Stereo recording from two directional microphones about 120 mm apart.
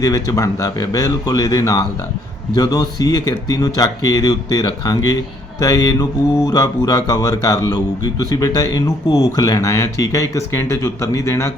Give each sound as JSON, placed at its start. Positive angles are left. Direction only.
{"t": 0.0, "sound": "speech", "side_deg": 30}